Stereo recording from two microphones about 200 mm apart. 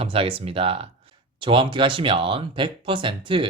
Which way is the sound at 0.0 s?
30° right (ahead or behind).